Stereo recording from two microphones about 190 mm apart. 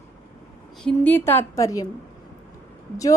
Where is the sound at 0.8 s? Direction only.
10° left (ahead or behind).